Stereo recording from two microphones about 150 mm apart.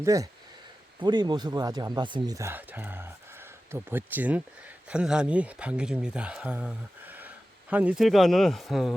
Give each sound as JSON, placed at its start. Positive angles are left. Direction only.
{"t": 0.0, "sound": "speech", "side_deg": -20}